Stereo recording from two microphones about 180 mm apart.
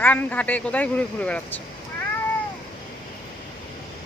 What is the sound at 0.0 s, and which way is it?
Speech, 10° left (ahead or behind).